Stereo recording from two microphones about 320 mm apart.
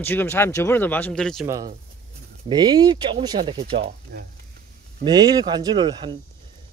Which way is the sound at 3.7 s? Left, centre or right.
Right.